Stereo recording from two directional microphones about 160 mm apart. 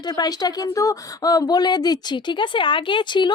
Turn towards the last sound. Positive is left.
turn(degrees=30)  # may be behind; listen again after turning